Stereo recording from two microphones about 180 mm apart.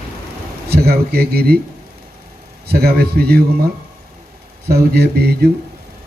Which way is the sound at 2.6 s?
60° right (ahead or behind).